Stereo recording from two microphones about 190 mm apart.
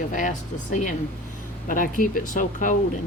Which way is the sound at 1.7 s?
45° left (ahead or behind).